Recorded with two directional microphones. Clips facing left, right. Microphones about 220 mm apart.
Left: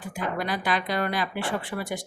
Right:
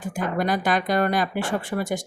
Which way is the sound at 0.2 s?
45° right (ahead or behind).